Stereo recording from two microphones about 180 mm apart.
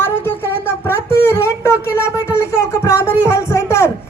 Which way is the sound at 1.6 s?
15° left (ahead or behind).